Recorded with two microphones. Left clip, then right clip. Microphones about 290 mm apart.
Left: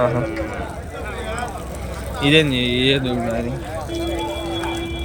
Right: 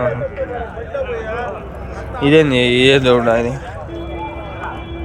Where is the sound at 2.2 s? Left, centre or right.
Centre.